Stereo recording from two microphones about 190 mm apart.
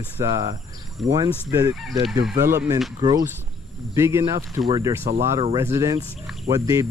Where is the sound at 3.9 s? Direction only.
15° right (ahead or behind).